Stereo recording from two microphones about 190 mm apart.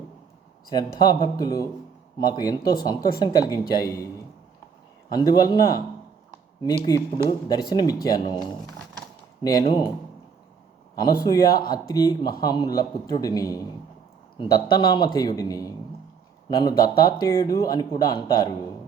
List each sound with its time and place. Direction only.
0.7 s speech: 20° left (ahead or behind)
5.0 s speech: 20° left (ahead or behind)
6.9 s speech: 20° left (ahead or behind)
10.9 s speech: 20° left (ahead or behind)